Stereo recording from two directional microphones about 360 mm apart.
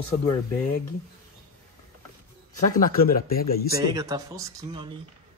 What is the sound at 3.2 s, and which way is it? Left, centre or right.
Speech, left.